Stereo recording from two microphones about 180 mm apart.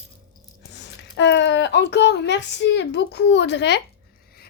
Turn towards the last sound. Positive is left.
turn(degrees=70)  # may be behind; listen again after turning